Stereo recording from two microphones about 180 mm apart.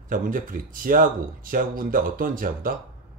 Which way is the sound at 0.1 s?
50° right (ahead or behind).